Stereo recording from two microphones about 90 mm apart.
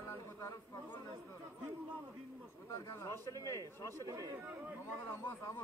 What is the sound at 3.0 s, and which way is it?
Speech, 35° left (ahead or behind).